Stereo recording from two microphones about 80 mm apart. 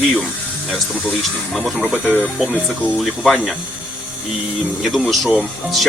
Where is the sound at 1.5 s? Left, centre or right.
Centre.